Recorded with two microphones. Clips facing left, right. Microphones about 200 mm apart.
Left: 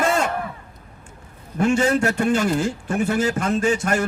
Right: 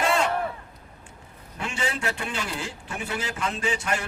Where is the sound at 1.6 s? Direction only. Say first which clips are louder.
Left 12 dB; 45° left (ahead or behind).